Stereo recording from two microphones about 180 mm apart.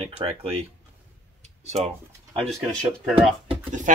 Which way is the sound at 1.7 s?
35° right (ahead or behind).